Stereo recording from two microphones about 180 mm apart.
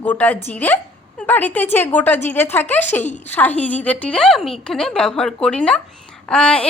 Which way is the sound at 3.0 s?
40° left (ahead or behind).